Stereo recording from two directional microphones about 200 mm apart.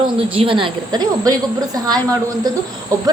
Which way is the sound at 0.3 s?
25° right (ahead or behind).